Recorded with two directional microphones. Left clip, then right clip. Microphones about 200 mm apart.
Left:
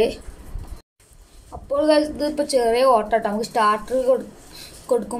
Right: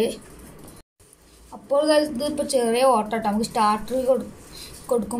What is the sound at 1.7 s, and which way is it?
Speech, 30° left (ahead or behind).